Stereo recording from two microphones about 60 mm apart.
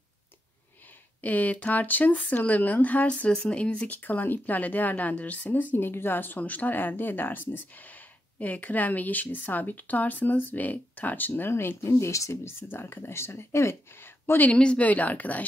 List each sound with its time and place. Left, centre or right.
1.2 s speech: left
14.5 s speech: centre